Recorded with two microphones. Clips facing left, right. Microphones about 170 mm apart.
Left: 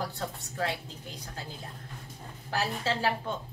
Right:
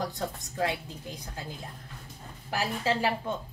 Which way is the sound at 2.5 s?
10° right (ahead or behind).